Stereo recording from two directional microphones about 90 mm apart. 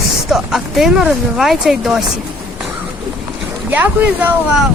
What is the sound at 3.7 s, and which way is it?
Speech, 20° right (ahead or behind).